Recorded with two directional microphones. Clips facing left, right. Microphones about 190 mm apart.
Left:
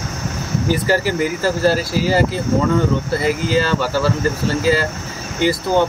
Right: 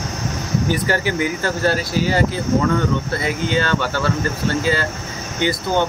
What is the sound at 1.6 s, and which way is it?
Speech, centre (ahead or behind).